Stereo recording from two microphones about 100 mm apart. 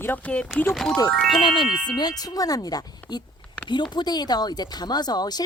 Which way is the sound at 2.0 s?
40° left (ahead or behind).